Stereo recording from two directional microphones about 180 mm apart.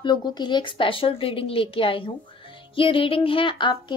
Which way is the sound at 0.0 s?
25° left (ahead or behind).